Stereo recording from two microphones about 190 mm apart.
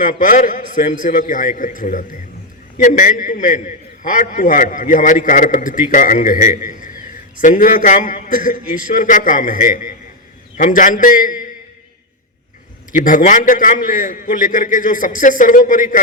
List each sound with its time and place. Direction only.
0.0 s a man's voice: 45° left (ahead or behind)
12.9 s a man's voice: 45° left (ahead or behind)